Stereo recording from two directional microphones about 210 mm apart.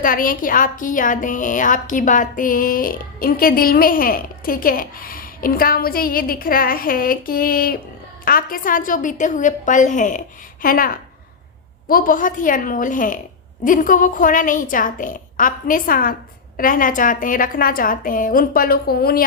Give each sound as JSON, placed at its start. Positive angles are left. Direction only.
{"t": 0.0, "sound": "a woman's voice", "side_deg": 40}